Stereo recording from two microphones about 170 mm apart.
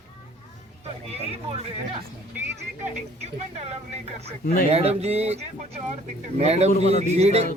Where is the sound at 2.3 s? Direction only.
10° right (ahead or behind).